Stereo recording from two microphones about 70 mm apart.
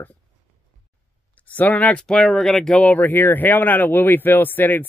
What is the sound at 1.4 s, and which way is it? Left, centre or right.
Speech, left.